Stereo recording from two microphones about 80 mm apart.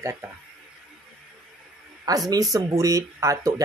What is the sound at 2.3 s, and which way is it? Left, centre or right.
Speech, right.